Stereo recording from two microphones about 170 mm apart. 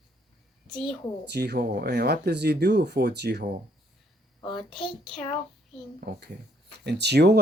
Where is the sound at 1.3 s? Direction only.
75° right (ahead or behind).